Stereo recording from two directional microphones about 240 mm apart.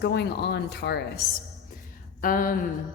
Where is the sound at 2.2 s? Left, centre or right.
Left.